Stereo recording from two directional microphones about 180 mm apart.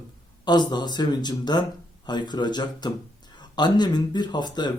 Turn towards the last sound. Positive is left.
turn(degrees=25)  # may be behind; listen again after turning